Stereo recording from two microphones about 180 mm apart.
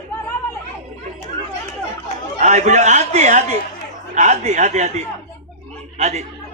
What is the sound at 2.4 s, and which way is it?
A man's voice, 40° right (ahead or behind).